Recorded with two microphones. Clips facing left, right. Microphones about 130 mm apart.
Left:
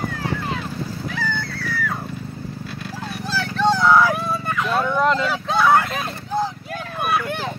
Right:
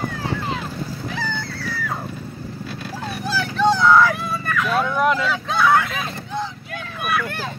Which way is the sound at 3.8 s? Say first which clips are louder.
Even; 10° left (ahead or behind).